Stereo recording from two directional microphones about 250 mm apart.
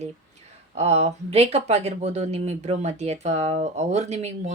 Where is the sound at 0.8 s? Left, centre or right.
Right.